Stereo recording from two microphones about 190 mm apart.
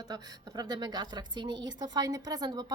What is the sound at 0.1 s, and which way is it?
Speech, 20° right (ahead or behind).